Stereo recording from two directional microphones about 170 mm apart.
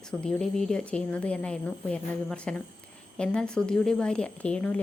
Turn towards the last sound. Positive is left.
turn(degrees=5)  # may be behind; listen again after turning